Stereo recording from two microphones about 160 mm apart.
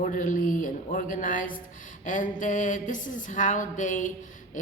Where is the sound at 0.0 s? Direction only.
55° left (ahead or behind).